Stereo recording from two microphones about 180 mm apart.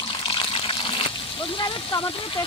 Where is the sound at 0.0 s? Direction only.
30° left (ahead or behind).